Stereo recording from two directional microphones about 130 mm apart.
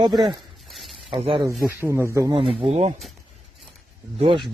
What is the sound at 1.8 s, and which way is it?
Speech, 20° right (ahead or behind).